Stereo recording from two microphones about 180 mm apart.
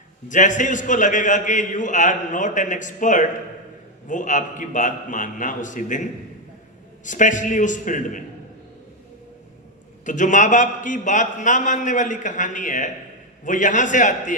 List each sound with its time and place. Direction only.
0.3 s a man's voice: 45° left (ahead or behind)
10.1 s a man's voice: 45° left (ahead or behind)